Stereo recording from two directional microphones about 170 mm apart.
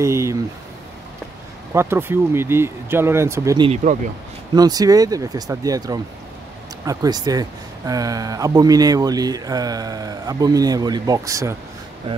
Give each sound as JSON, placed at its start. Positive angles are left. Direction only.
{"t": 0.0, "sound": "speech", "side_deg": -15}
{"t": 1.7, "sound": "speech", "side_deg": -15}
{"t": 3.6, "sound": "speech", "side_deg": -40}
{"t": 4.6, "sound": "speech", "side_deg": -20}